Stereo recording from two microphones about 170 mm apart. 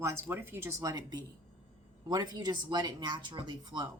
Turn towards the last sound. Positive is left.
turn(degrees=-25)  # may be behind; listen again after turning